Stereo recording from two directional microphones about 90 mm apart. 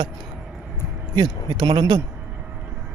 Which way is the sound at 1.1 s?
55° right (ahead or behind).